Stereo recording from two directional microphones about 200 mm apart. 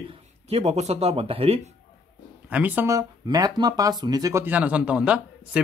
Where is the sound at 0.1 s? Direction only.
30° right (ahead or behind).